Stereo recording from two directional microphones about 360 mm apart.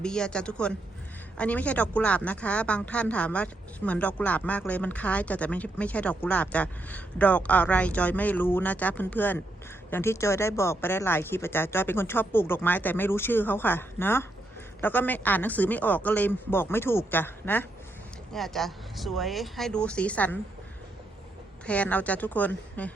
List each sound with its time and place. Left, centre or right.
0.0 s speech: centre
21.7 s speech: centre